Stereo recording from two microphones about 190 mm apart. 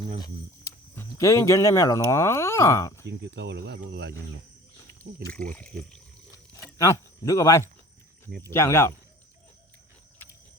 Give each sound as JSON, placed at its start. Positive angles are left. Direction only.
{"t": 0.9, "sound": "speech", "side_deg": 15}
{"t": 3.1, "sound": "speech", "side_deg": -65}
{"t": 5.5, "sound": "speech", "side_deg": 5}
{"t": 6.3, "sound": "a sound", "side_deg": 15}
{"t": 8.4, "sound": "speech", "side_deg": 15}